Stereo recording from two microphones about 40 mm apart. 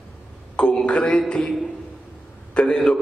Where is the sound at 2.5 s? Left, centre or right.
Left.